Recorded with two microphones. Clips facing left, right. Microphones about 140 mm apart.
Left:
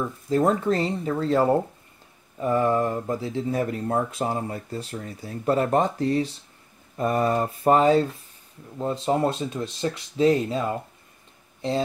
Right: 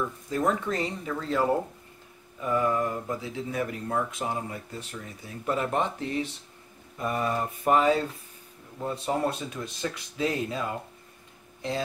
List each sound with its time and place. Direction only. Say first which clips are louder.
0.3 s speech: left 7 dB; 30° left (ahead or behind)
8.7 s speech: left 5 dB; 25° left (ahead or behind)